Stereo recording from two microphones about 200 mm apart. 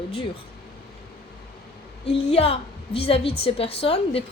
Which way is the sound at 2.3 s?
30° left (ahead or behind).